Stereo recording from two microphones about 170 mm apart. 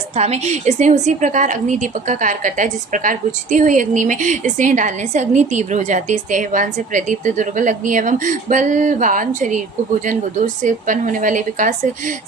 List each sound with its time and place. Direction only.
0.2 s a woman's voice: 40° right (ahead or behind)